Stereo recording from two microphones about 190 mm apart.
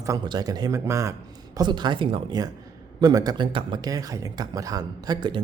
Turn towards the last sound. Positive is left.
turn(degrees=-25)  # may be behind; listen again after turning